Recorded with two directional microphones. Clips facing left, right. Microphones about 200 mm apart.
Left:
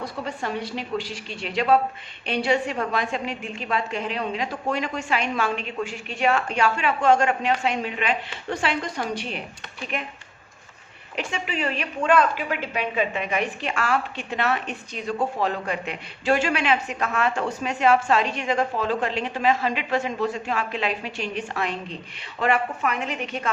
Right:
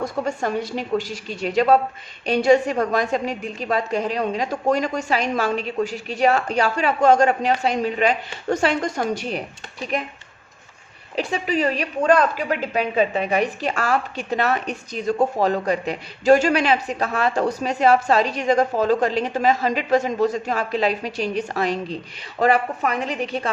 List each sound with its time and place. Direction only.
0.0 s a woman's voice: 45° right (ahead or behind)
11.2 s a woman's voice: 35° right (ahead or behind)